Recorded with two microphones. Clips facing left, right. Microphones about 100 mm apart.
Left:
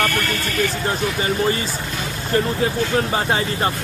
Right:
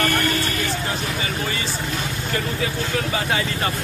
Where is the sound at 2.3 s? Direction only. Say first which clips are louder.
Left 7 dB; 35° left (ahead or behind).